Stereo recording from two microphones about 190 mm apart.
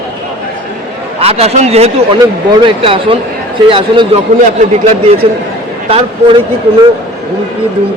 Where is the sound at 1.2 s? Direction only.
35° right (ahead or behind).